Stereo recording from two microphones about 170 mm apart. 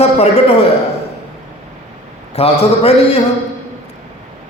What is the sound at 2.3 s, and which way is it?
Speech, 40° left (ahead or behind).